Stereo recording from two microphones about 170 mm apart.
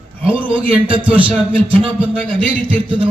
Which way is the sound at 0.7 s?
10° right (ahead or behind).